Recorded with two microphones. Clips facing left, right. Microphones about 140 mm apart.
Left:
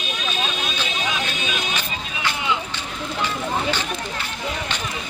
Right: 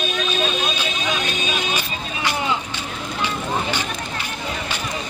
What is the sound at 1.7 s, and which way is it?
Vehicle, 10° right (ahead or behind).